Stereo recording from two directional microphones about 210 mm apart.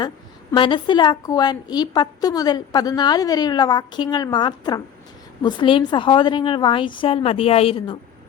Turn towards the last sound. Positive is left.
turn(degrees=25)  # may be behind; listen again after turning